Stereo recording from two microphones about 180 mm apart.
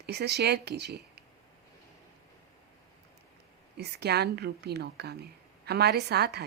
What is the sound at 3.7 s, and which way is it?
Speech, 65° right (ahead or behind).